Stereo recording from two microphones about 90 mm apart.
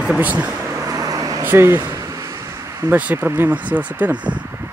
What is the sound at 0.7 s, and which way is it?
Vehicle, 40° right (ahead or behind).